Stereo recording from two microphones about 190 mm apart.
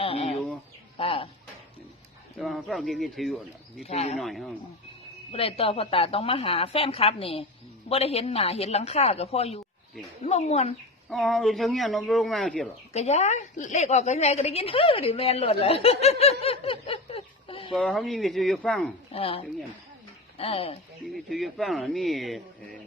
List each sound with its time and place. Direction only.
0.0 s a sound: 30° left (ahead or behind)
0.9 s bird: 30° left (ahead or behind)
2.4 s speech: centre (ahead or behind)
3.8 s a woman's voice: 35° left (ahead or behind)
4.2 s speech: centre (ahead or behind)
5.3 s a woman's voice: 30° left (ahead or behind)
11.1 s speech: centre (ahead or behind)
12.9 s a woman's voice: 35° left (ahead or behind)
17.7 s speech: centre (ahead or behind)
19.1 s a woman's voice: 30° left (ahead or behind)
20.4 s a woman's voice: 30° left (ahead or behind)
21.1 s speech: centre (ahead or behind)